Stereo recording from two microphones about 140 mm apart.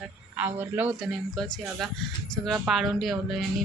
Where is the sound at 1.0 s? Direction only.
Centre (ahead or behind).